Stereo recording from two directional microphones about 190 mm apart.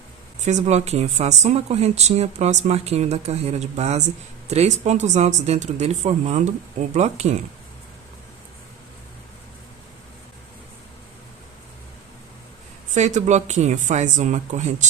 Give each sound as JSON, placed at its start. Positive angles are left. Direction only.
{"t": 0.4, "sound": "a woman's voice", "side_deg": -35}
{"t": 12.9, "sound": "a woman's voice", "side_deg": -40}